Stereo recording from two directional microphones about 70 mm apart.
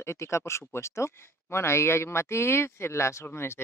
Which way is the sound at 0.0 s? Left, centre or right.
Left.